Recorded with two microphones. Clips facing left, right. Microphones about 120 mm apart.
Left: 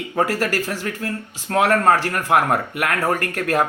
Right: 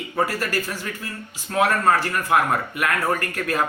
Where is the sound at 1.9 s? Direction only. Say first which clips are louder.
Left 2 dB; 85° left.